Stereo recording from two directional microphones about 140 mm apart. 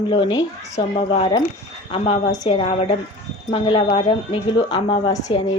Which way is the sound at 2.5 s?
45° left (ahead or behind).